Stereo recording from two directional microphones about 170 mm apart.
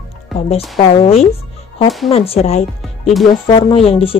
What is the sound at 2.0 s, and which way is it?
Speech, 35° left (ahead or behind).